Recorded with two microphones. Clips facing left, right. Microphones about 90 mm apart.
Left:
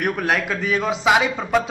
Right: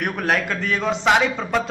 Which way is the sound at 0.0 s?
Centre (ahead or behind).